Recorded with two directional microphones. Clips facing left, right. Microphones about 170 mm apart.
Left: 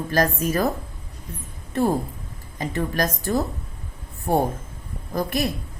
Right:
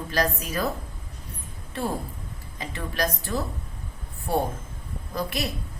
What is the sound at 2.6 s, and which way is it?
Speech, 45° left (ahead or behind).